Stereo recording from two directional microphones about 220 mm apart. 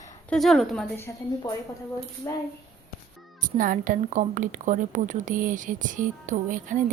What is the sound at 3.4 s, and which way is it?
A woman's voice, 35° right (ahead or behind).